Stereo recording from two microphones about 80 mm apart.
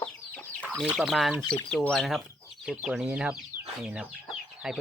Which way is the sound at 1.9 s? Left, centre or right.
Centre.